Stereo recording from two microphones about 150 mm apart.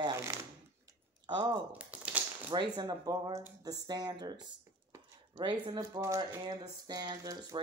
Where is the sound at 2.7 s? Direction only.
25° right (ahead or behind).